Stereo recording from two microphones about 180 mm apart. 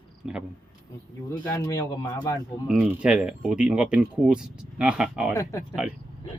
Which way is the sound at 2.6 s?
5° right (ahead or behind).